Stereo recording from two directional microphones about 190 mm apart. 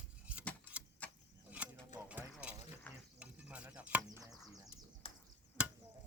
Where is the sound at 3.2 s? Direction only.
5° right (ahead or behind).